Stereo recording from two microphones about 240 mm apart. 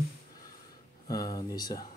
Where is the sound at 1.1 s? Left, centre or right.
Centre.